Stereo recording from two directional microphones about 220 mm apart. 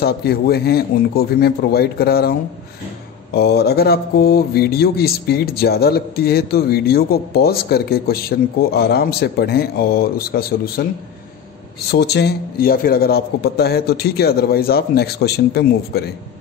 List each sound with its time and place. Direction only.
0.0 s speech: 45° left (ahead or behind)
3.3 s speech: 45° left (ahead or behind)
11.9 s speech: 50° left (ahead or behind)